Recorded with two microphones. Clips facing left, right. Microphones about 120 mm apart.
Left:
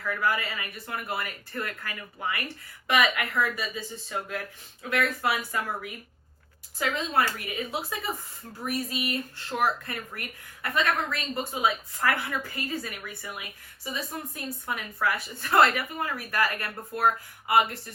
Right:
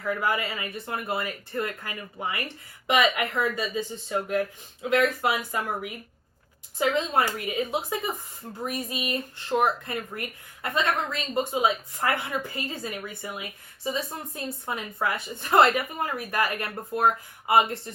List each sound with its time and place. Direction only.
0.0 s speech: 20° right (ahead or behind)